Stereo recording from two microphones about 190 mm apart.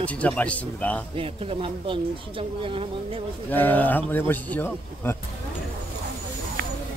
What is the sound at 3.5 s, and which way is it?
Speech, 10° left (ahead or behind).